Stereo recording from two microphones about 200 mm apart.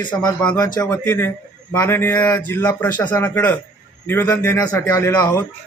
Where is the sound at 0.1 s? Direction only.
10° left (ahead or behind).